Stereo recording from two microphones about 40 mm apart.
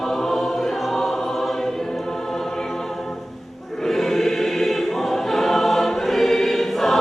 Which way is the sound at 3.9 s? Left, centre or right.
Centre.